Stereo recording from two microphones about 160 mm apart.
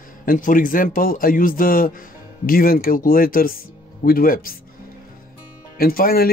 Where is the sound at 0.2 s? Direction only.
60° left (ahead or behind).